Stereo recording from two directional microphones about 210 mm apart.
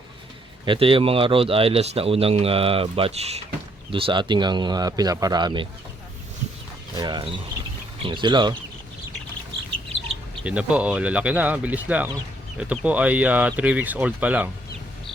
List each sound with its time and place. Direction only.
0.6 s speech: 25° right (ahead or behind)
6.9 s speech: 20° right (ahead or behind)
10.4 s speech: 5° right (ahead or behind)